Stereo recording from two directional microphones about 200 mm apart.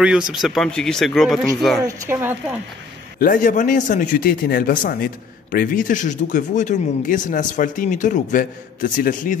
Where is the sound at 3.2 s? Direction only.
40° left (ahead or behind).